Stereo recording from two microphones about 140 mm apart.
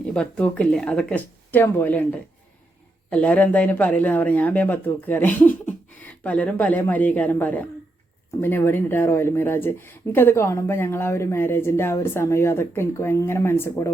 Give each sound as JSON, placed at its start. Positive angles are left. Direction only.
{"t": 0.0, "sound": "speech", "side_deg": 5}